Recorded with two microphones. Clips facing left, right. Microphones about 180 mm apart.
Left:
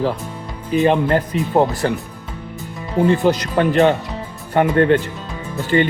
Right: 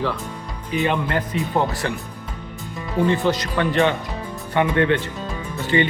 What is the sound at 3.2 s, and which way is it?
Speech, 45° left (ahead or behind).